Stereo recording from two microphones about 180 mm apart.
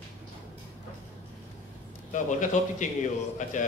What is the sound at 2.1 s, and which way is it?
Speech, 45° left (ahead or behind).